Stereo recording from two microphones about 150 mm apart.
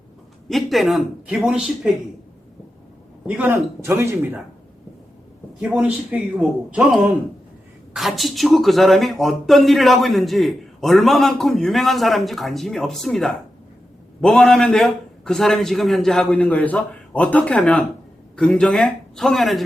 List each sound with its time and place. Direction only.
0.4 s speech: centre (ahead or behind)
3.2 s speech: 10° right (ahead or behind)
5.5 s speech: 5° right (ahead or behind)